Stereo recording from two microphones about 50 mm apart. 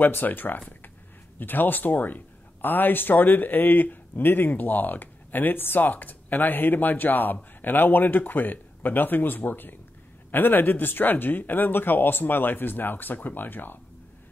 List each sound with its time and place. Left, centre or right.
0.0 s speech: left